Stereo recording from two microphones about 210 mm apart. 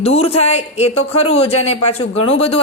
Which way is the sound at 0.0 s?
30° left (ahead or behind).